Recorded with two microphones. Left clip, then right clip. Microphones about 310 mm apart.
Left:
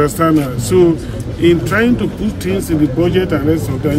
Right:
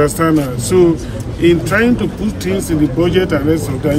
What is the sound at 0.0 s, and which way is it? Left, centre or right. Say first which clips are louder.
A man's voice: even; centre.